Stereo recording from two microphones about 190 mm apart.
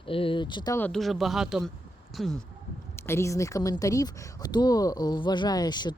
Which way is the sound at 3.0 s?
15° left (ahead or behind).